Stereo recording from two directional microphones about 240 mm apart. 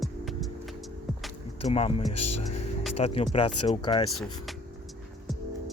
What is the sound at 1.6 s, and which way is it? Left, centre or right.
Speech, left.